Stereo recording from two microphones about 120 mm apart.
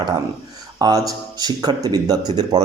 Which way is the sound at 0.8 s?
30° right (ahead or behind).